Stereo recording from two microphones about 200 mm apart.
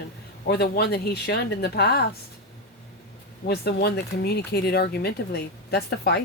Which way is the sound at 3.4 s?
55° left (ahead or behind).